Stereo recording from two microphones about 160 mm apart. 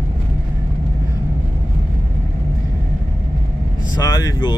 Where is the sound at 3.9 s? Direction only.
25° left (ahead or behind).